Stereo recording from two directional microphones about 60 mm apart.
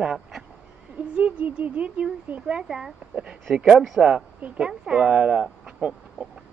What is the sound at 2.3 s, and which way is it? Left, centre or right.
Speech, centre.